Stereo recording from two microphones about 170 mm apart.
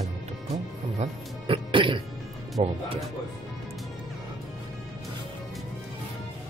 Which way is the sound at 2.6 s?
35° right (ahead or behind).